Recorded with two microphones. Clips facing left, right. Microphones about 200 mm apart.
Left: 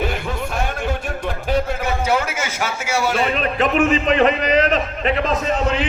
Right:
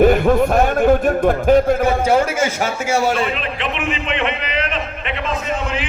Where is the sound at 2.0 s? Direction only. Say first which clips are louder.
Right 3 dB; 30° right (ahead or behind).